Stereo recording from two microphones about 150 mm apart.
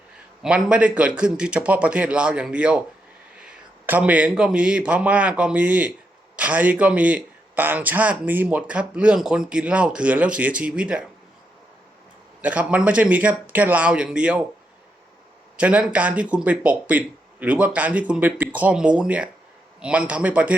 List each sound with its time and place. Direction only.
0.4 s a man's voice: 5° right (ahead or behind)
3.8 s a man's voice: 10° right (ahead or behind)
12.4 s a man's voice: 10° right (ahead or behind)
15.5 s a man's voice: 10° right (ahead or behind)